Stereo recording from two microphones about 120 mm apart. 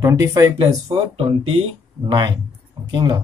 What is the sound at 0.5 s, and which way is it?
Speech, 50° right (ahead or behind).